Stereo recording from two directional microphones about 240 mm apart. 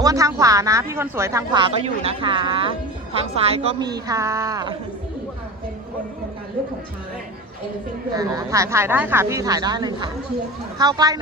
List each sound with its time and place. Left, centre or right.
0.0 s a woman's voice: centre
1.7 s a woman's voice: right
8.1 s a woman's voice: centre